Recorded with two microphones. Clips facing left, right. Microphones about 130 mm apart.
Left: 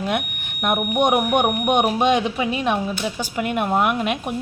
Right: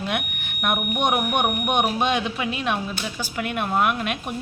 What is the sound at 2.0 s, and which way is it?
Speech, 20° left (ahead or behind).